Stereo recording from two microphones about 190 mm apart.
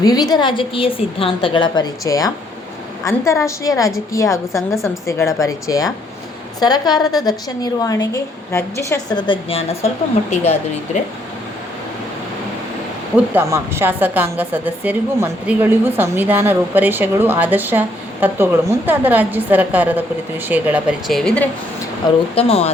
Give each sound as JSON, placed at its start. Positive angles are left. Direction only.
{"t": 0.0, "sound": "a woman's voice", "side_deg": 20}
{"t": 13.1, "sound": "a woman's voice", "side_deg": -10}
{"t": 21.1, "sound": "speech", "side_deg": 5}
{"t": 22.4, "sound": "speech", "side_deg": 30}